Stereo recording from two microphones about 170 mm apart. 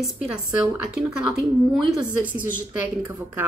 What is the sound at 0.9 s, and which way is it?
A woman's voice, 5° right (ahead or behind).